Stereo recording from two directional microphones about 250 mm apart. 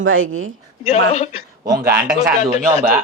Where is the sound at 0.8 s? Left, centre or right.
Left.